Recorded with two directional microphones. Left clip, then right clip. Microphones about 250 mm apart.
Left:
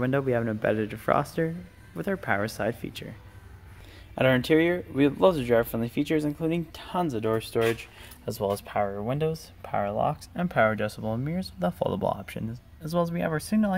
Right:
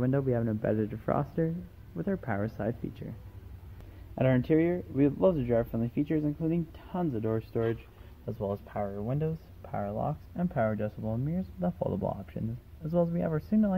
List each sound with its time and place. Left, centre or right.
0.0 s speech: centre
4.1 s speech: centre